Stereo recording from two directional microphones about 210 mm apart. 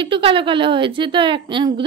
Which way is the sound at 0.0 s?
25° right (ahead or behind).